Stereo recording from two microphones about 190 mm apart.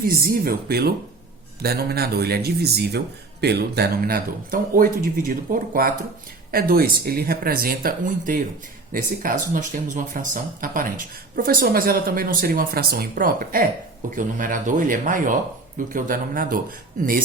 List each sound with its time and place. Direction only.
0.0 s speech: 50° right (ahead or behind)